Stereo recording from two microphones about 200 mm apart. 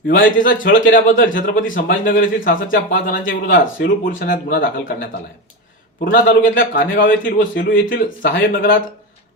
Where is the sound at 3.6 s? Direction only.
45° left (ahead or behind).